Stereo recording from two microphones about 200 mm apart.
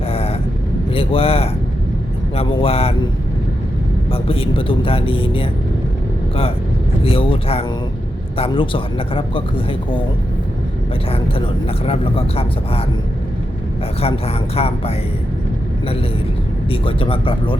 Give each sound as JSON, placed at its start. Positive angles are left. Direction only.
{"t": 0.1, "sound": "vehicle", "side_deg": 30}
{"t": 0.9, "sound": "speech", "side_deg": 30}
{"t": 4.1, "sound": "speech", "side_deg": 25}
{"t": 7.0, "sound": "speech", "side_deg": 25}
{"t": 11.9, "sound": "speech", "side_deg": 30}
{"t": 14.0, "sound": "speech", "side_deg": 30}
{"t": 16.8, "sound": "speech", "side_deg": 25}